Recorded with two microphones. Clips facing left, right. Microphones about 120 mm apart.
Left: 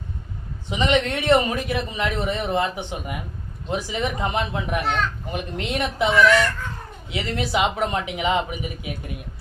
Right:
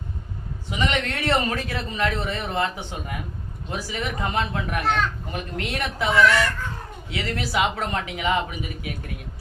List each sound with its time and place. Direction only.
0.7 s a man's voice: 20° left (ahead or behind)